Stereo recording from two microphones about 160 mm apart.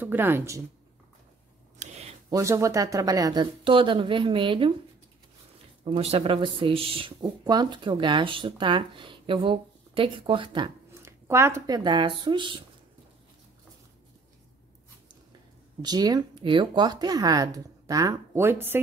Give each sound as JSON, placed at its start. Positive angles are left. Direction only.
{"t": 0.0, "sound": "speech", "side_deg": -15}
{"t": 1.8, "sound": "a sound", "side_deg": -40}
{"t": 2.2, "sound": "speech", "side_deg": -20}
{"t": 5.9, "sound": "speech", "side_deg": -40}
{"t": 11.0, "sound": "speech", "side_deg": -15}
{"t": 15.8, "sound": "speech", "side_deg": -25}